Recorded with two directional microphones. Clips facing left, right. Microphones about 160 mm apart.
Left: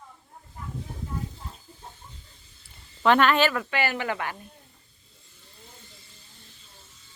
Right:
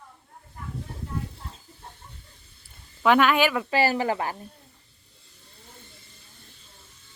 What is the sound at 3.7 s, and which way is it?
Speech, 35° right (ahead or behind).